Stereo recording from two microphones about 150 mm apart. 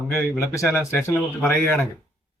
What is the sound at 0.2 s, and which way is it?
Speech, 15° left (ahead or behind).